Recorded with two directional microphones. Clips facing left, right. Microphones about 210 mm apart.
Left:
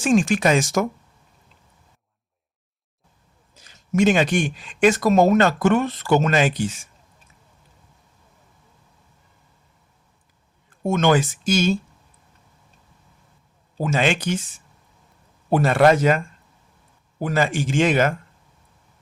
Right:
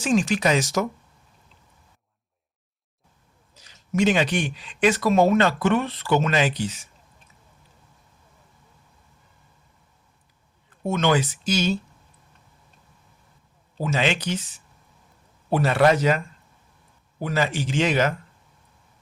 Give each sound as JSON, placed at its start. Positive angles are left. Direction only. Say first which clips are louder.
{"t": 0.0, "sound": "speech", "louder": "left 3 dB", "side_deg": 50}
{"t": 3.5, "sound": "speech", "louder": "left 3 dB", "side_deg": 50}
{"t": 10.8, "sound": "speech", "louder": "left 3 dB", "side_deg": 45}
{"t": 13.8, "sound": "speech", "louder": "left 3 dB", "side_deg": 50}
{"t": 15.4, "sound": "speech", "louder": "left 3 dB", "side_deg": 50}